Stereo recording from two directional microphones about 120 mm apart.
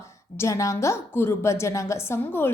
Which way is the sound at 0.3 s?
25° left (ahead or behind).